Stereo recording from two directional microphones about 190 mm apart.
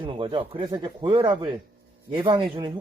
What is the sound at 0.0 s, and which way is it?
Speech, 25° right (ahead or behind).